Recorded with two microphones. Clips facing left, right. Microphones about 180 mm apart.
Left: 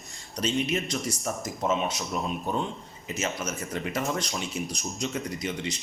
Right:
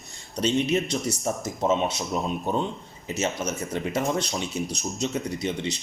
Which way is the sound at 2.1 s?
25° right (ahead or behind).